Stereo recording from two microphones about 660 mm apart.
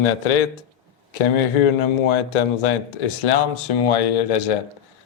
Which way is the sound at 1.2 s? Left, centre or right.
Left.